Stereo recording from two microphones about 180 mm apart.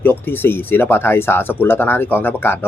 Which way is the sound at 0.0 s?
10° left (ahead or behind).